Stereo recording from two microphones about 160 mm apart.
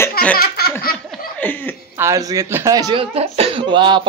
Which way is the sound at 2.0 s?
20° right (ahead or behind).